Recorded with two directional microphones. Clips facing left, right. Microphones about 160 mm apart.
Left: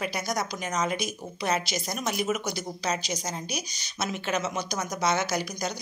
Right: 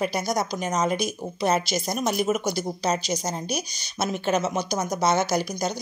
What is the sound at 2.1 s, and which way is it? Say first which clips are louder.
Speech: right 4 dB; 50° right (ahead or behind).